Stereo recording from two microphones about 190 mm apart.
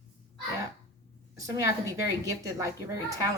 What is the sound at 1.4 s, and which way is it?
A woman's voice, 15° right (ahead or behind).